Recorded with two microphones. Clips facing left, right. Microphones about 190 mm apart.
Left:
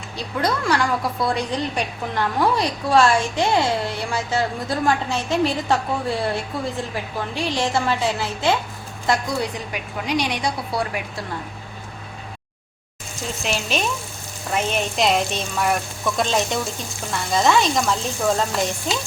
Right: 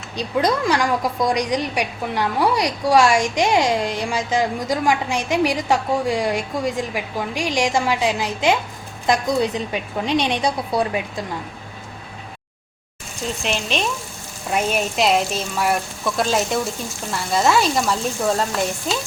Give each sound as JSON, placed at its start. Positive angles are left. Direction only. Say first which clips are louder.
{"t": 0.2, "sound": "a woman's voice", "louder": "right 4 dB", "side_deg": -20}
{"t": 14.5, "sound": "speech", "louder": "right 2 dB", "side_deg": -5}